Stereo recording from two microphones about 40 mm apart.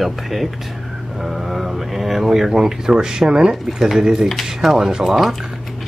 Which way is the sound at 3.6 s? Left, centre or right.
Centre.